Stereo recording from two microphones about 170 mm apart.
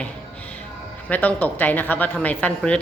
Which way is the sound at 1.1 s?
10° left (ahead or behind).